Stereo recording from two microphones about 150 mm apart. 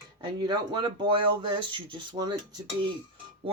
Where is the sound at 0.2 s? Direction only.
30° right (ahead or behind).